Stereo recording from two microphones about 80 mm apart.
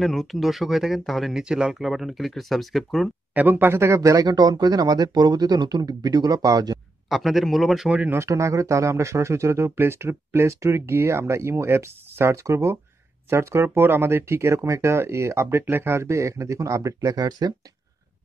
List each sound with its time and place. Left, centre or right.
0.0 s speech: centre
3.3 s speech: right
7.1 s speech: centre
7.9 s speech: right
8.2 s speech: right